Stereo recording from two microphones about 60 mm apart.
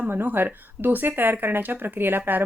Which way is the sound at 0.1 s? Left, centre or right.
Right.